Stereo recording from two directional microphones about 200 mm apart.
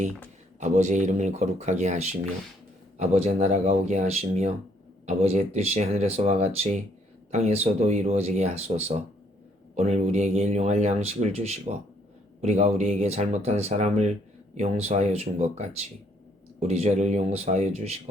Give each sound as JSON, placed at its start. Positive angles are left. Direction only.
{"t": 0.6, "sound": "speech", "side_deg": -35}